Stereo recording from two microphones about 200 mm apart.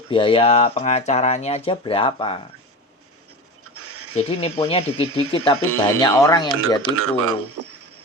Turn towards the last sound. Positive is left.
turn(degrees=-90)